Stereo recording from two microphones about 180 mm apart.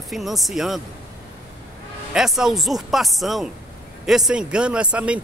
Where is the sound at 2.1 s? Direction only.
5° right (ahead or behind).